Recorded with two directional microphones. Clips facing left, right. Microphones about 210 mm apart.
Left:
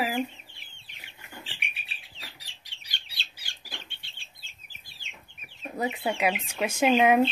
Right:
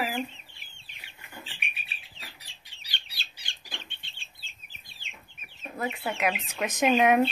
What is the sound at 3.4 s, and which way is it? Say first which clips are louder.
Bird: right 1 dB; 10° left (ahead or behind).